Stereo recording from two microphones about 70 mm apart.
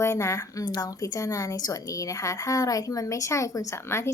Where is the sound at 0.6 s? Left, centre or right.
Left.